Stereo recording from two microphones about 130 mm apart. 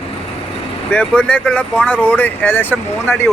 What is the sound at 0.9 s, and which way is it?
Speech, 10° left (ahead or behind).